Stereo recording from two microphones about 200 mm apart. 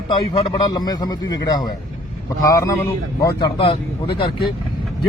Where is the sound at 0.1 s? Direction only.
30° left (ahead or behind).